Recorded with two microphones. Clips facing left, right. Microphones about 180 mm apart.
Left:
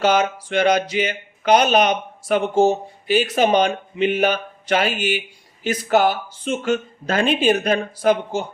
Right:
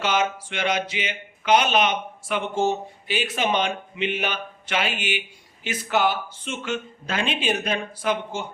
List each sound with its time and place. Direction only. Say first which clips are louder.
0.0 s speech: left 6 dB; 40° left (ahead or behind)